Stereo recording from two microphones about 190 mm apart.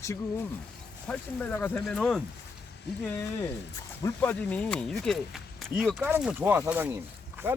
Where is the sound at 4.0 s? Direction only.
15° left (ahead or behind).